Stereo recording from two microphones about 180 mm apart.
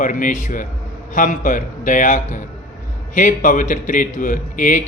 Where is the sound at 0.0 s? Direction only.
45° left (ahead or behind).